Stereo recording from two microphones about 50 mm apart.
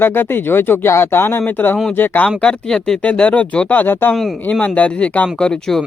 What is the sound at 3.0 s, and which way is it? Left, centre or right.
Speech, left.